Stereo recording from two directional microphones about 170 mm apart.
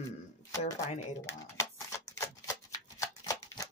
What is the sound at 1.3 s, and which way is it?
Shuffling cards, 20° left (ahead or behind).